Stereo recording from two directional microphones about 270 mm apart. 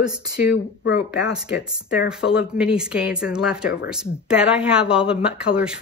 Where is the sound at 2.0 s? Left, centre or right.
Centre.